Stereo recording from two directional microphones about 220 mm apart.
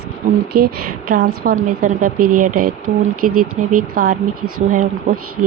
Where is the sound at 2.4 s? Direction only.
40° right (ahead or behind).